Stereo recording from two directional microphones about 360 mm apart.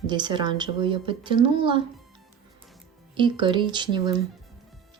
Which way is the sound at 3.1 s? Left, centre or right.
Centre.